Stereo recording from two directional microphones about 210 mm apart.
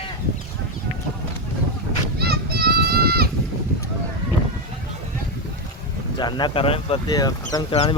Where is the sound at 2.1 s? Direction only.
50° right (ahead or behind).